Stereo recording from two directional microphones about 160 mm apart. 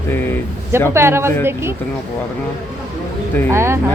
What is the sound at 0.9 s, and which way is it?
Speech, 15° right (ahead or behind).